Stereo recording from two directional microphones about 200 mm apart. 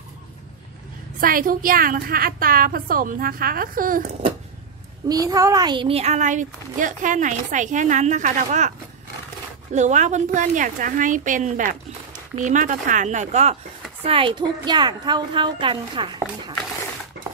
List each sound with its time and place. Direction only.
1.2 s a woman's voice: 45° right (ahead or behind)
5.0 s speech: 20° right (ahead or behind); by 8.7 s 40° right (ahead or behind)
9.8 s a woman's voice: 35° right (ahead or behind)